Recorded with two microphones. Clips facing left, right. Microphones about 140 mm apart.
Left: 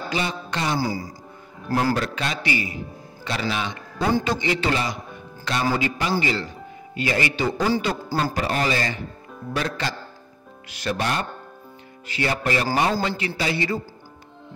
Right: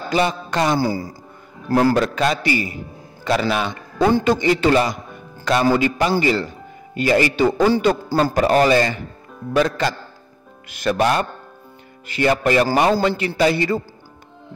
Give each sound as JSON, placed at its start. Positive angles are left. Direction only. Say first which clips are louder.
{"t": 0.1, "sound": "a man's voice", "louder": "right 9 dB", "side_deg": -45}
{"t": 9.6, "sound": "a man's voice", "louder": "right 9 dB", "side_deg": -50}